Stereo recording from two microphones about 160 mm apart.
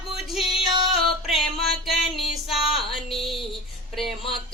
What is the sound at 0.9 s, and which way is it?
Music, centre (ahead or behind).